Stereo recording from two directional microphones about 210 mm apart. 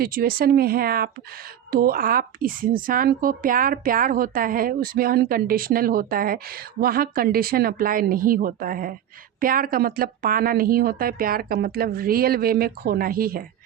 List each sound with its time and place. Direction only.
0.0 s a woman's voice: 45° right (ahead or behind)